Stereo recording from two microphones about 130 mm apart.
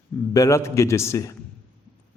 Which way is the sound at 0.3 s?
25° left (ahead or behind).